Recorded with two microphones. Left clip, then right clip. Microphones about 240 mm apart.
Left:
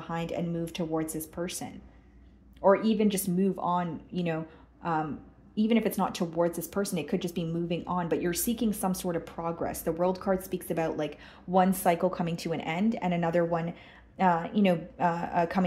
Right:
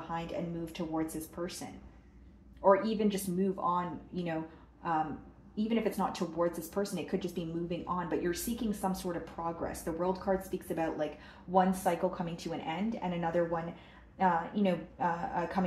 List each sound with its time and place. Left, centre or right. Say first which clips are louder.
0.1 s speech: left 5 dB; left
2.6 s speech: left 3 dB; left
5.6 s speech: left 5 dB; left